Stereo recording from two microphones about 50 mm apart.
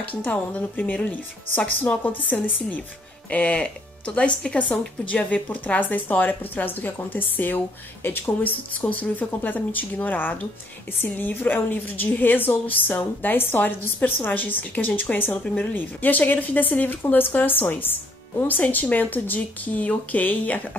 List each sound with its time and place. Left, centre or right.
0.0 s speech: left
8.8 s speech: left
15.1 s speech: left